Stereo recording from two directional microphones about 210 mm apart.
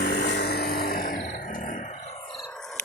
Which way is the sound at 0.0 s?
50° left (ahead or behind).